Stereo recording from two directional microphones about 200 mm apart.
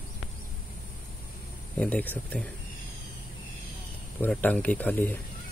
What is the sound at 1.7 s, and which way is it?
Speech, 5° left (ahead or behind).